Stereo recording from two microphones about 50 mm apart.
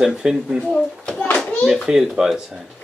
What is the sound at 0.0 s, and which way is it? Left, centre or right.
Speech, centre.